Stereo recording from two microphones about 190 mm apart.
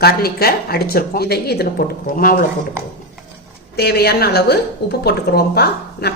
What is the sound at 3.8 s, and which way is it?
A woman's voice, 60° left (ahead or behind).